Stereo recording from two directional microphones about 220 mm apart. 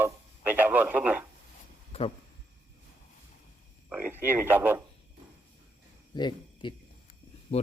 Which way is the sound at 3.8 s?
10° right (ahead or behind).